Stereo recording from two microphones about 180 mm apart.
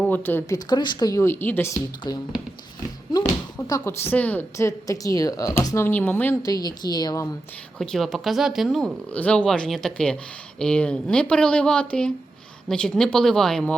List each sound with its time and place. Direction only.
0.0 s a woman's voice: 10° left (ahead or behind)
3.7 s a woman's voice: 15° left (ahead or behind)
6.4 s a woman's voice: 20° left (ahead or behind)
7.8 s speech: centre (ahead or behind)